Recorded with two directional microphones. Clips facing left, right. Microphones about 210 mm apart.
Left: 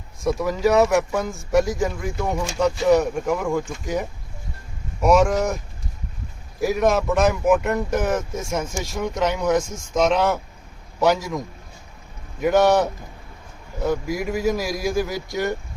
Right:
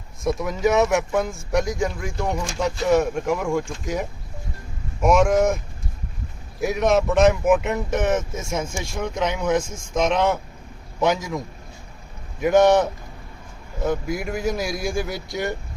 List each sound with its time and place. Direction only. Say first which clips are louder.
0.3 s speech: left 1 dB; centre (ahead or behind)
6.6 s speech: even; centre (ahead or behind)
13.8 s speech: left 1 dB; centre (ahead or behind)